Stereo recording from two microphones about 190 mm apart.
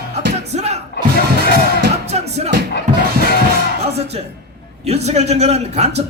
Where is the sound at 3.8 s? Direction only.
35° right (ahead or behind).